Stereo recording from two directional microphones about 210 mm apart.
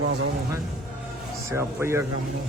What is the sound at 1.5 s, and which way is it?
Speech, 15° right (ahead or behind).